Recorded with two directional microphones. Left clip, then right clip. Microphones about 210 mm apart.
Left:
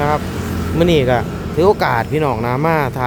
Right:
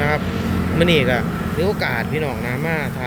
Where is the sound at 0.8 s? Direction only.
25° left (ahead or behind).